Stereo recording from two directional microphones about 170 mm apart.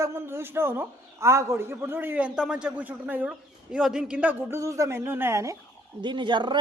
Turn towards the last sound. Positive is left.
turn(degrees=-30)  # may be behind; listen again after turning